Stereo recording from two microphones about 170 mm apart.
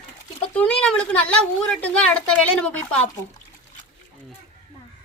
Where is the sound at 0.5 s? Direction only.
5° left (ahead or behind).